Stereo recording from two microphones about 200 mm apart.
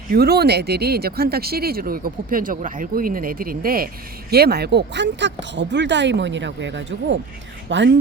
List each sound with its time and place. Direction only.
0.1 s speech: 50° right (ahead or behind)